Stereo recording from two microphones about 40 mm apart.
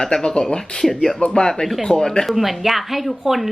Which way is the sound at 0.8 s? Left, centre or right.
Centre.